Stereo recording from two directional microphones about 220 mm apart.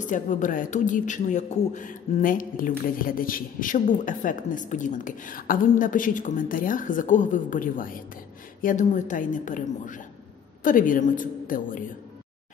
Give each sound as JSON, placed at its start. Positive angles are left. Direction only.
{"t": 0.0, "sound": "a man's voice", "side_deg": 35}